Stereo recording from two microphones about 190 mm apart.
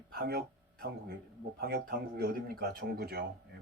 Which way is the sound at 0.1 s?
55° right (ahead or behind).